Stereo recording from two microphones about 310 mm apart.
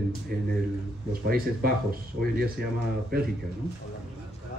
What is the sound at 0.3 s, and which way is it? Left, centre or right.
A man's voice, right.